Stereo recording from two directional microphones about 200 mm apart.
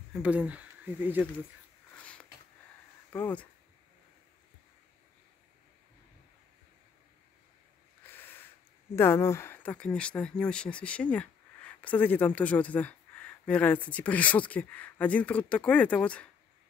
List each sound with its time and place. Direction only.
0.1 s speech: 5° right (ahead or behind)
3.1 s speech: 10° left (ahead or behind)
8.1 s a sound: 10° left (ahead or behind)
8.9 s speech: 10° left (ahead or behind)